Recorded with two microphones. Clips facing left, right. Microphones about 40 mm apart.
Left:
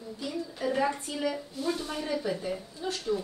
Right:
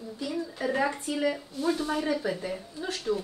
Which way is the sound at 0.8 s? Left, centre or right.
Centre.